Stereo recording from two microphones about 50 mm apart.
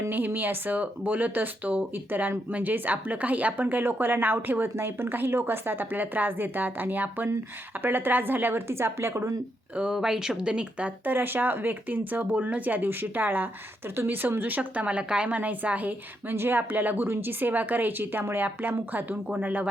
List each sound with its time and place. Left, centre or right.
0.1 s a woman's voice: right
8.7 s a woman's voice: right
9.7 s a woman's voice: centre; by 13.5 s right
13.9 s a woman's voice: right
16.3 s a woman's voice: right